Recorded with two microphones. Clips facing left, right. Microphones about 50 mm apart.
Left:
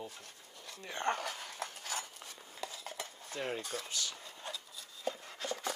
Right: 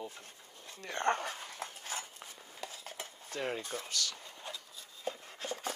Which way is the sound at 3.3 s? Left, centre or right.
Right.